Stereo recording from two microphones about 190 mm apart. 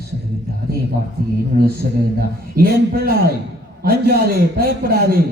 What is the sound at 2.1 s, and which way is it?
A man's voice, 55° right (ahead or behind).